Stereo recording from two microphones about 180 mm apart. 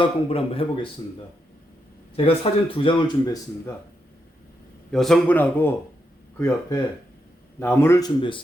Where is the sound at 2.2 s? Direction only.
30° left (ahead or behind).